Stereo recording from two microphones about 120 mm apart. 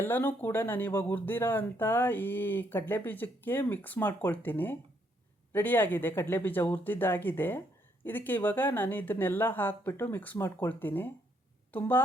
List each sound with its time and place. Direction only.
0.0 s speech: 15° left (ahead or behind)